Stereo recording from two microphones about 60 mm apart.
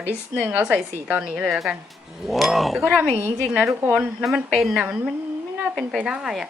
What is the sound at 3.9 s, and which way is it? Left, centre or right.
Speech, centre.